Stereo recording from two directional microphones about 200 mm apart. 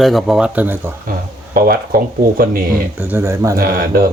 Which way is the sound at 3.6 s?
45° right (ahead or behind).